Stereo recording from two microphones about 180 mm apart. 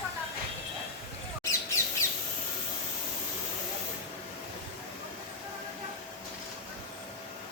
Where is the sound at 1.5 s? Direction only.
15° left (ahead or behind).